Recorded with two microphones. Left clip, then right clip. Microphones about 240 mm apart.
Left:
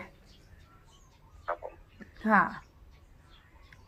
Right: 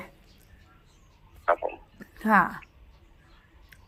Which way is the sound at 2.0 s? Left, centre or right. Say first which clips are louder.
Right 3 dB; right.